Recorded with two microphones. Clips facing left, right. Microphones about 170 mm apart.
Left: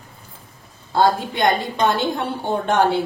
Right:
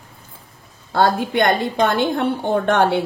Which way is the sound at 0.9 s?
65° right (ahead or behind).